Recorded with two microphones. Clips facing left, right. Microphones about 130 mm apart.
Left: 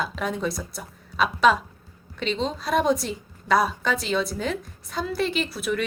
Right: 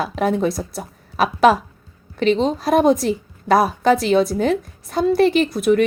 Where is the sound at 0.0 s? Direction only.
60° right (ahead or behind).